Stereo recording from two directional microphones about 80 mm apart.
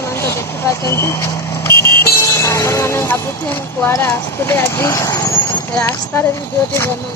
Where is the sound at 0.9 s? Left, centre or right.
Left.